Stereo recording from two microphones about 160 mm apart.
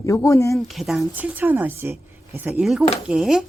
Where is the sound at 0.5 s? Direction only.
Centre (ahead or behind).